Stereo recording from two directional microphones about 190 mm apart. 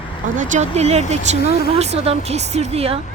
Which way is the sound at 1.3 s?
55° left (ahead or behind).